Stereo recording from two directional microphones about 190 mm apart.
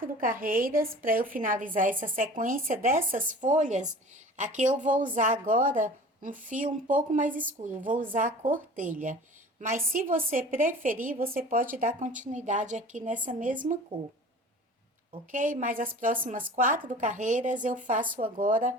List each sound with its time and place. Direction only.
0.0 s a woman's voice: 45° right (ahead or behind)
15.3 s a woman's voice: 45° right (ahead or behind)